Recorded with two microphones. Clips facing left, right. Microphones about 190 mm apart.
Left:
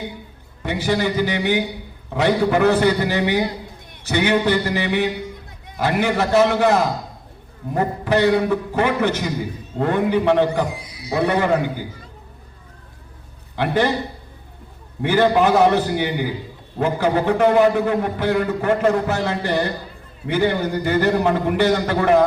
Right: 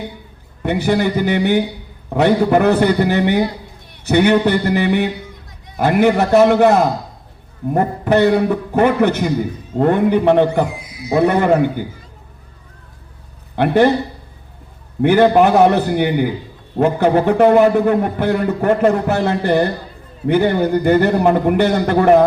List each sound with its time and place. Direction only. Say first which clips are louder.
0.6 s a man's voice: right 4 dB; 55° right (ahead or behind)
10.8 s a sound: right 5 dB; 30° left (ahead or behind)
11.1 s a man's voice: right 5 dB; 55° right (ahead or behind)
13.6 s a man's voice: right 7 dB; 55° right (ahead or behind)
15.0 s a man's voice: right 5 dB; 55° right (ahead or behind)